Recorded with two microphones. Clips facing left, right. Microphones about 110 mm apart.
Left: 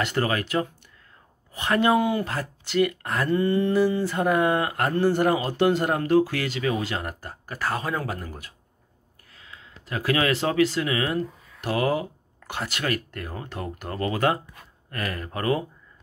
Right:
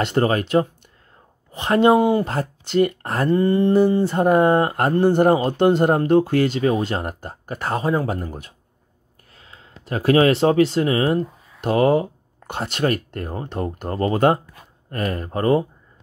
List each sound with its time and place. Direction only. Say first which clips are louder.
0.0 s speech: right 6 dB; 30° right (ahead or behind)